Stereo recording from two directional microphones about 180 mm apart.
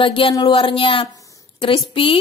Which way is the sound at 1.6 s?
30° left (ahead or behind).